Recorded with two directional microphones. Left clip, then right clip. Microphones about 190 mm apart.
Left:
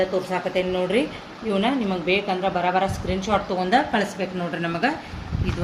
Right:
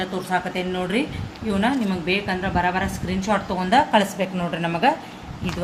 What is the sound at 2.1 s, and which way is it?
A woman's voice, 45° right (ahead or behind).